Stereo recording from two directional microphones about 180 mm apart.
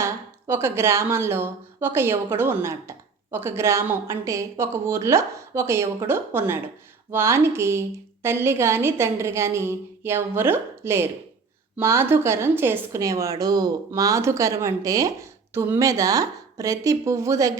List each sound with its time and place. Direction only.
0.0 s a woman's voice: 15° right (ahead or behind)